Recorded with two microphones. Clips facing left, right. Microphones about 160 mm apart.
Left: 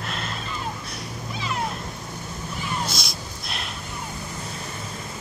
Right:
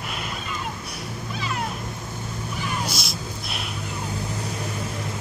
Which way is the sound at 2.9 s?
5° right (ahead or behind).